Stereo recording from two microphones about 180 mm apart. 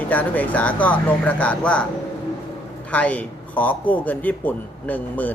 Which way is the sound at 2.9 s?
5° left (ahead or behind).